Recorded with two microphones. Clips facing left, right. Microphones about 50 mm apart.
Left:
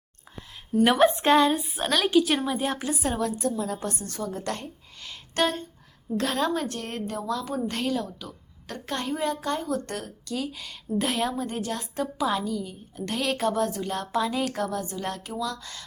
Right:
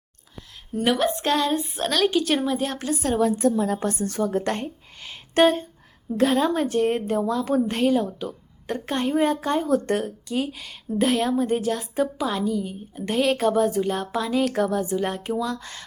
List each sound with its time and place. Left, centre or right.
0.9 s speech: left
1.5 s a woman's voice: centre
3.6 s a woman's voice: right
4.9 s a sound: right
6.1 s a woman's voice: centre
7.9 s a woman's voice: right
9.1 s a woman's voice: right
10.5 s a woman's voice: centre
12.5 s a woman's voice: centre
14.5 s speech: centre